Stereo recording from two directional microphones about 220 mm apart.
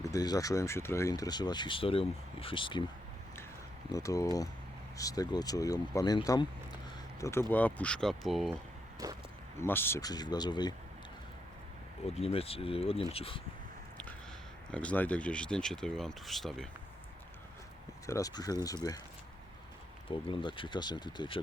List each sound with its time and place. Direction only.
0.1 s speech: 15° left (ahead or behind)
3.9 s speech: 15° left (ahead or behind)
9.0 s speech: 15° right (ahead or behind)
9.6 s speech: 10° left (ahead or behind)
12.0 s speech: 25° left (ahead or behind)
14.7 s speech: 5° left (ahead or behind)
18.0 s speech: 15° left (ahead or behind)
20.1 s speech: 25° left (ahead or behind)